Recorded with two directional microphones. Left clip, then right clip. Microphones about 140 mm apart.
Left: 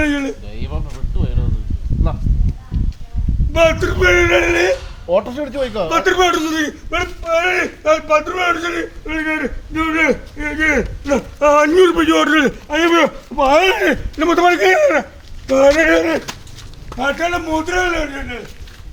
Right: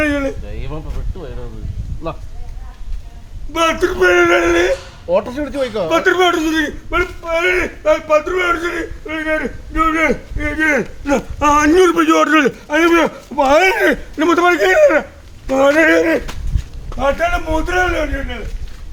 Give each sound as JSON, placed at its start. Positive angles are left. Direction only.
{"t": 0.0, "sound": "a sound", "side_deg": -15}
{"t": 1.2, "sound": "speech", "side_deg": -15}
{"t": 3.5, "sound": "speech", "side_deg": -15}
{"t": 13.4, "sound": "speech", "side_deg": -35}